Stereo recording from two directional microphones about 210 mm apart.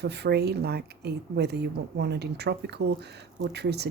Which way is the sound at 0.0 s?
50° right (ahead or behind).